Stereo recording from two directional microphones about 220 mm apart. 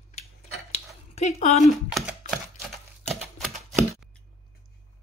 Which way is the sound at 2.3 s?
Centre (ahead or behind).